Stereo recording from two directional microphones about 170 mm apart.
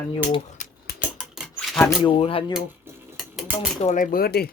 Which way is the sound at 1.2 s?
5° right (ahead or behind).